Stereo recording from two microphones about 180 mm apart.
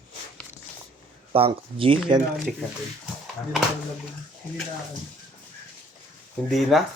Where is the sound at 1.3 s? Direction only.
30° right (ahead or behind).